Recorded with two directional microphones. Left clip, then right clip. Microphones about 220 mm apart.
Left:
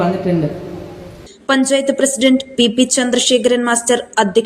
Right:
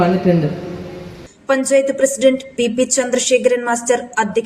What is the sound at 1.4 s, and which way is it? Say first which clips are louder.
A woman's voice: even; 5° left (ahead or behind).